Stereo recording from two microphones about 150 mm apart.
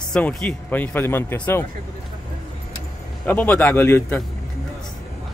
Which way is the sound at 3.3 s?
10° left (ahead or behind).